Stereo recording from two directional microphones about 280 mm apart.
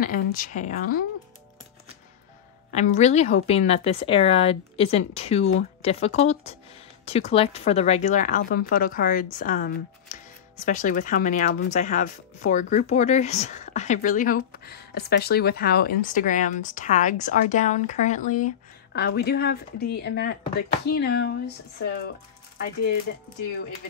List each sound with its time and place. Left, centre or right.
0.0 s speech: left
2.7 s speech: left